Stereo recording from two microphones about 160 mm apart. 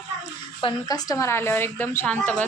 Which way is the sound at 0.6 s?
25° left (ahead or behind).